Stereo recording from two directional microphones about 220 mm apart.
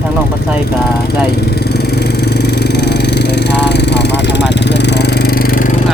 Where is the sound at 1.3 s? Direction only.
45° left (ahead or behind).